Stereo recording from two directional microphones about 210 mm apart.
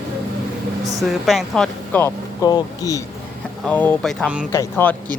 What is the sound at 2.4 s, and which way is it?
Speech, 15° left (ahead or behind).